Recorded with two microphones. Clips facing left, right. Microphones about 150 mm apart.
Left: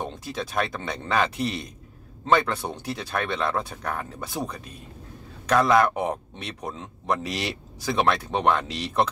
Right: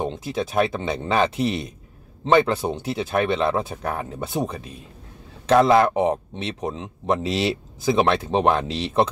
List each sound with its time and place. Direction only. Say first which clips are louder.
0.1 s speech: right 5 dB; 25° right (ahead or behind)